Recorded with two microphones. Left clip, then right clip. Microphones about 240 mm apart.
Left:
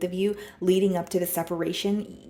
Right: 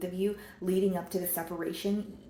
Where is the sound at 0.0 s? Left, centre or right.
Left.